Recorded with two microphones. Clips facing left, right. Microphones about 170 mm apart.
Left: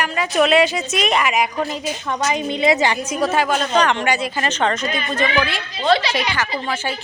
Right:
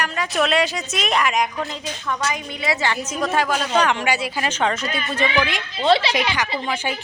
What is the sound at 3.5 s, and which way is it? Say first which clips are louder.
Speech: left 2 dB; 10° right (ahead or behind).